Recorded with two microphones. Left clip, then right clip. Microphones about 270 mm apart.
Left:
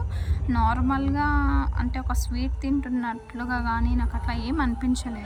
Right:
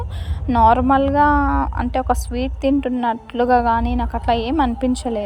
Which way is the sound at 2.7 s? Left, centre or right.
Right.